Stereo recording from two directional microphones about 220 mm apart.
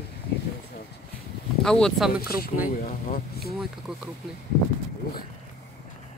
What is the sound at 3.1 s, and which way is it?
Speech, 45° left (ahead or behind).